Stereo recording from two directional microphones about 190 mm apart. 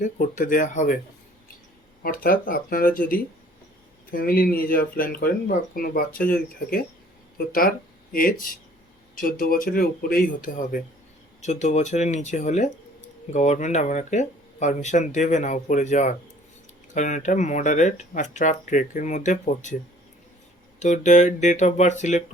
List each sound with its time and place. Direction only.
0.0 s speech: 45° left (ahead or behind)
2.0 s speech: 50° left (ahead or behind)
20.7 s speech: 40° left (ahead or behind)